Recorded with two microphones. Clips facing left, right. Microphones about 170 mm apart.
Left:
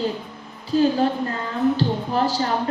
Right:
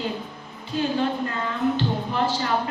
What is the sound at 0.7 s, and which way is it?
A woman's voice, 35° left (ahead or behind).